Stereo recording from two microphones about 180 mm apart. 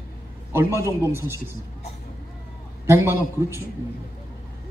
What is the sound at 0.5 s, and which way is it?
Speech, 15° right (ahead or behind).